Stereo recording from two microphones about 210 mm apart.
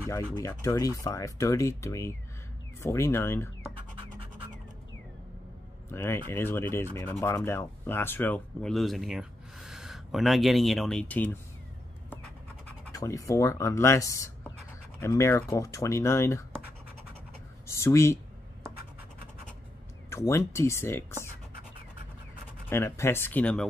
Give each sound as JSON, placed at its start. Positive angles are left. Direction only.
{"t": 0.3, "sound": "speech", "side_deg": 15}
{"t": 5.9, "sound": "speech", "side_deg": 10}
{"t": 12.9, "sound": "speech", "side_deg": 15}
{"t": 17.6, "sound": "speech", "side_deg": 15}
{"t": 20.1, "sound": "speech", "side_deg": 15}
{"t": 22.7, "sound": "speech", "side_deg": 10}